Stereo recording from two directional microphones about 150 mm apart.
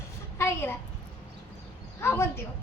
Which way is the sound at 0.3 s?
15° left (ahead or behind).